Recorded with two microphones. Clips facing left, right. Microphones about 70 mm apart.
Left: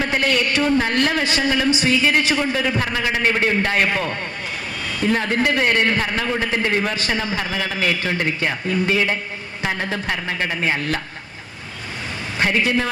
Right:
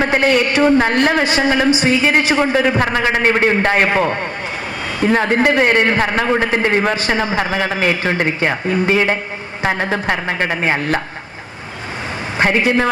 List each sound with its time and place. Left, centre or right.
0.0 s a man's voice: right
12.4 s a woman's voice: right